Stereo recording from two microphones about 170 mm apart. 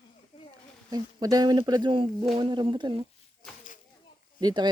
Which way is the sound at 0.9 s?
20° right (ahead or behind).